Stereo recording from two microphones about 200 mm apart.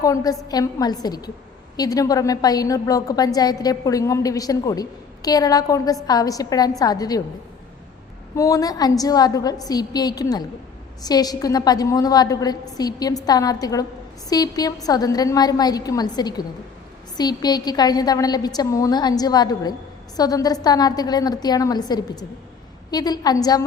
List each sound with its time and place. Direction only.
0.0 s a woman's voice: 15° left (ahead or behind)
8.4 s a woman's voice: 15° left (ahead or behind)